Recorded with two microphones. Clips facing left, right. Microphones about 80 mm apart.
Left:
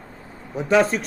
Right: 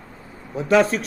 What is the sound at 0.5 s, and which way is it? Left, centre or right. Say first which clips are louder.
Speech: right 1 dB; centre.